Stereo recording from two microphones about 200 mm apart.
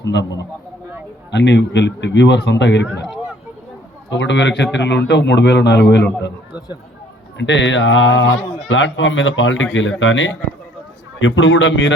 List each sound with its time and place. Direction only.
0.0 s a man's voice: 60° left (ahead or behind)
4.1 s a man's voice: 65° left (ahead or behind)
7.3 s a man's voice: 65° left (ahead or behind)